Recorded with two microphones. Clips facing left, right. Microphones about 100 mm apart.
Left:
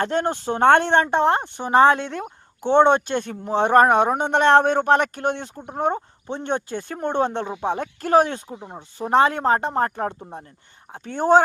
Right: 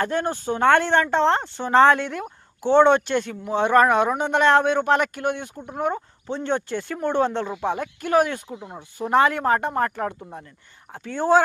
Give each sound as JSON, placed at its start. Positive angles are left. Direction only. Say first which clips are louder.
{"t": 0.0, "sound": "a man's voice", "louder": "left 2 dB", "side_deg": 25}